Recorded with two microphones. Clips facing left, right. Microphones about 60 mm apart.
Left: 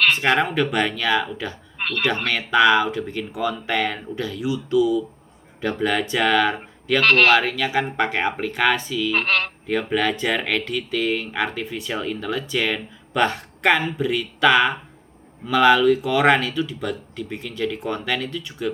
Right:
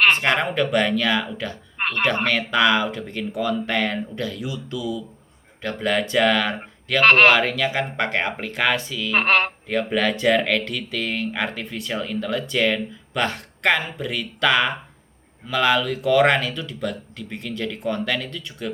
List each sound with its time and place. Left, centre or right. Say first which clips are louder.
0.1 s speech: left 1 dB; centre
1.8 s a sound: right 2 dB; right
2.2 s speech: left 5 dB; centre
7.0 s speech: right 2 dB; right
7.3 s speech: left 1 dB; centre
9.1 s speech: right 5 dB; right
9.8 s speech: right 3 dB; centre